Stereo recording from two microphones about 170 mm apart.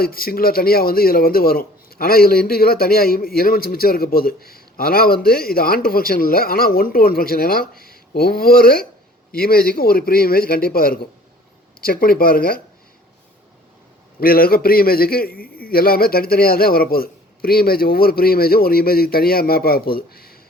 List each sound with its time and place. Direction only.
0.0 s a man's voice: 60° left (ahead or behind)
14.2 s a man's voice: 60° left (ahead or behind)